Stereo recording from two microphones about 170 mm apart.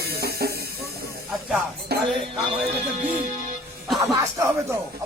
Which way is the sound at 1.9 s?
70° right (ahead or behind).